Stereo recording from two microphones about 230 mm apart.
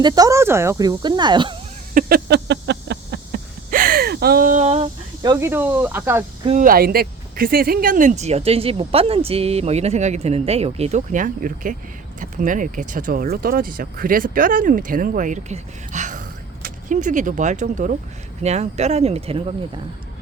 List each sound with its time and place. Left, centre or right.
0.0 s speech: centre
1.9 s a sound: right; by 6.2 s centre
6.4 s speech: right